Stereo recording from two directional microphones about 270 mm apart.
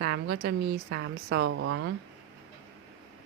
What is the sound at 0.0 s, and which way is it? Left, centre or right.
A woman's voice, right.